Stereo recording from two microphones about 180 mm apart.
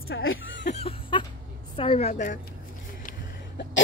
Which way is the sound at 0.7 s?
30° left (ahead or behind).